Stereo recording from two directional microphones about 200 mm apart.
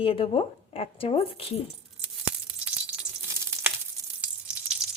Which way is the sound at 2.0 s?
5° right (ahead or behind).